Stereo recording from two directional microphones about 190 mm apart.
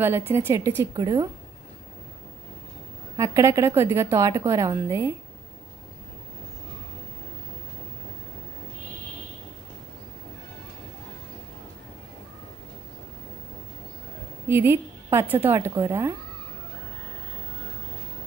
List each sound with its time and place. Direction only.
0.0 s a woman's voice: 10° right (ahead or behind)
3.2 s a woman's voice: 15° right (ahead or behind)
14.5 s a woman's voice: 15° right (ahead or behind)